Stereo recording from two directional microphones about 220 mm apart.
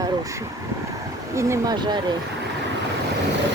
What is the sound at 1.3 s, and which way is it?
Speech, 15° right (ahead or behind).